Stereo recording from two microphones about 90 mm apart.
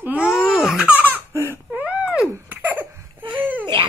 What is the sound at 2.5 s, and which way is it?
Cough, 20° right (ahead or behind).